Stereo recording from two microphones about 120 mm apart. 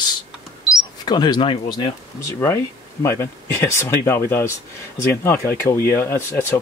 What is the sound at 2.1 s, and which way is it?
Speech, 25° left (ahead or behind).